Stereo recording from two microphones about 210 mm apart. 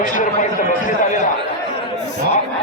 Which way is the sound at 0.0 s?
35° left (ahead or behind).